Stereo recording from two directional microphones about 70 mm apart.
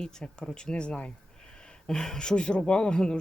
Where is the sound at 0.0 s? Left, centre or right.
Centre.